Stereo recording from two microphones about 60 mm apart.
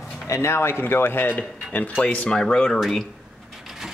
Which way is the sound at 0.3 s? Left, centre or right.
Left.